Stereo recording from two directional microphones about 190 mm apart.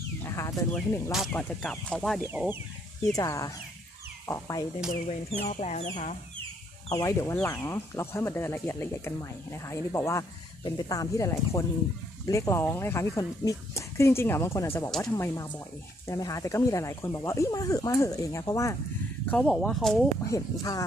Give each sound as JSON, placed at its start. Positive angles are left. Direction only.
{"t": 0.2, "sound": "speech", "side_deg": 15}
{"t": 2.2, "sound": "speech", "side_deg": -10}
{"t": 3.2, "sound": "speech", "side_deg": 20}
{"t": 5.4, "sound": "speech", "side_deg": 35}
{"t": 6.9, "sound": "speech", "side_deg": 15}
{"t": 14.8, "sound": "speech", "side_deg": 0}
{"t": 15.1, "sound": "speech", "side_deg": 15}
{"t": 20.3, "sound": "speech", "side_deg": 20}